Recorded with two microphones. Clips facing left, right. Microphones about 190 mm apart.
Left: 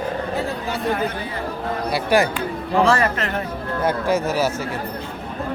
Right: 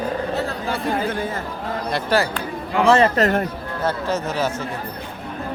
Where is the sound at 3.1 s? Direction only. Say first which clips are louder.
Right 7 dB; 45° right (ahead or behind).